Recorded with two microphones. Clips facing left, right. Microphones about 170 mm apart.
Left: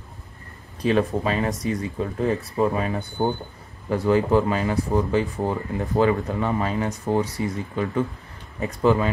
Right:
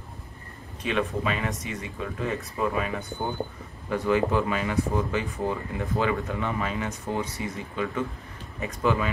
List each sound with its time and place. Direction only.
0.8 s speech: 35° left (ahead or behind)